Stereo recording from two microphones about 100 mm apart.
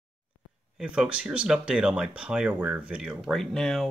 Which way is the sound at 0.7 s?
10° right (ahead or behind).